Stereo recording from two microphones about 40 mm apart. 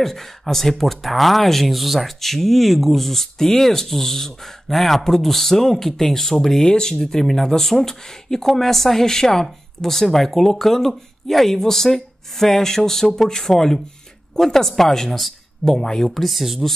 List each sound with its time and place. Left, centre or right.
0.0 s speech: centre